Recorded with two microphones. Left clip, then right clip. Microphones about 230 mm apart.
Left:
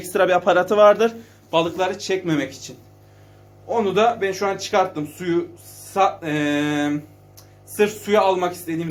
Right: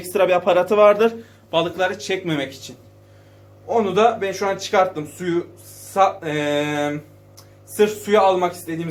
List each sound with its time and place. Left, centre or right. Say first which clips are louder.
0.1 s speech: even; centre